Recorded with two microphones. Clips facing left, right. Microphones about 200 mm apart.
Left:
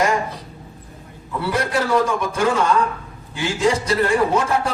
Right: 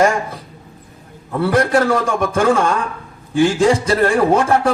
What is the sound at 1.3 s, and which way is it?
A man's voice, 55° right (ahead or behind).